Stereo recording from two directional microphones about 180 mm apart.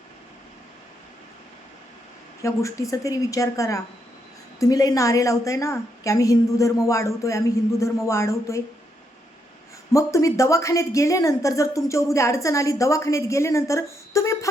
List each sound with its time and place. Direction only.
2.4 s a woman's voice: 15° left (ahead or behind)
9.9 s a woman's voice: 15° left (ahead or behind)